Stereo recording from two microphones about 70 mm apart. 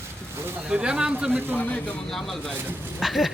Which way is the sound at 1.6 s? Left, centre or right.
Left.